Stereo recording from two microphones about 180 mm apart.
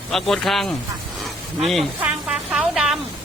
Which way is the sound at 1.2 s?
Centre (ahead or behind).